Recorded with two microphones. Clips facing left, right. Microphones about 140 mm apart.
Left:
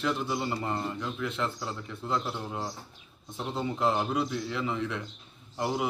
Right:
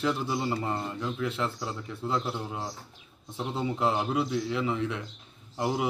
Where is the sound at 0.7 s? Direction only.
15° right (ahead or behind).